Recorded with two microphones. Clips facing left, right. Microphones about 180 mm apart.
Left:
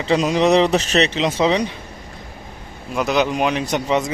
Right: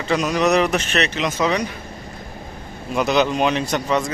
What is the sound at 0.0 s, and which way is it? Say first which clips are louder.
Speech: left 2 dB; 25° left (ahead or behind).